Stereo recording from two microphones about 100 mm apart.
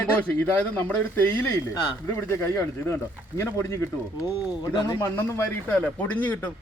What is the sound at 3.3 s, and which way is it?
Speech, 25° left (ahead or behind).